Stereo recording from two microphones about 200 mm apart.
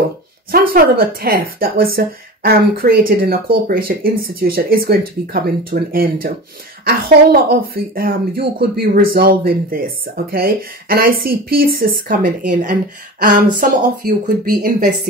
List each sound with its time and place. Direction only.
0.5 s speech: 50° right (ahead or behind)